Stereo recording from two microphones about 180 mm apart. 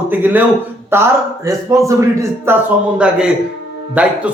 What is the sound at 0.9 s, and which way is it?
Speech, 15° right (ahead or behind).